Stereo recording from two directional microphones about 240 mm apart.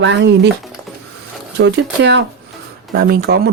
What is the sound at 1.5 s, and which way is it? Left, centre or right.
Speech, right.